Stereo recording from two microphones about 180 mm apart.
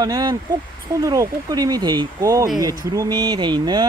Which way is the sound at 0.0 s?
20° right (ahead or behind).